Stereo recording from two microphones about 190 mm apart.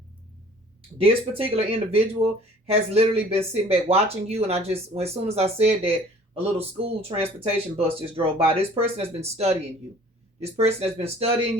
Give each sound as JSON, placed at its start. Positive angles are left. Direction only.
{"t": 1.0, "sound": "speech", "side_deg": -30}